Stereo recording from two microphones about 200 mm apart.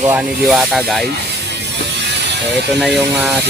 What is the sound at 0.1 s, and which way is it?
Speech, 5° right (ahead or behind).